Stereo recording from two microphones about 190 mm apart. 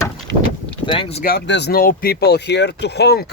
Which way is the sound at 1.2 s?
55° left (ahead or behind).